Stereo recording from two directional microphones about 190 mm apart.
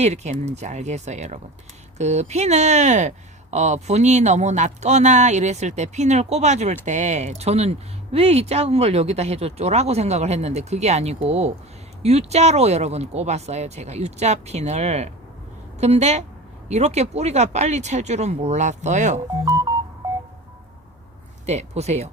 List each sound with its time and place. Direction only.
0.0 s speech: 35° right (ahead or behind)
19.5 s music: 15° right (ahead or behind)
21.4 s speech: 35° right (ahead or behind)